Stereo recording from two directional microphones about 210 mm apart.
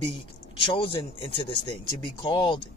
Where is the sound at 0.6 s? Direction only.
25° left (ahead or behind).